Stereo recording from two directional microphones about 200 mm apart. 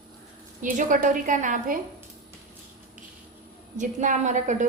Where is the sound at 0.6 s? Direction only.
40° right (ahead or behind).